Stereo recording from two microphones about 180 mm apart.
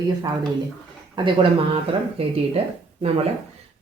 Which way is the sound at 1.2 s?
25° right (ahead or behind).